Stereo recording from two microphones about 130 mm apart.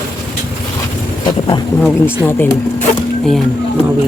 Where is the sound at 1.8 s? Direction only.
15° left (ahead or behind).